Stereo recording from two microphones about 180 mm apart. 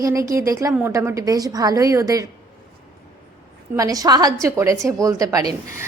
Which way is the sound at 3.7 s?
20° right (ahead or behind).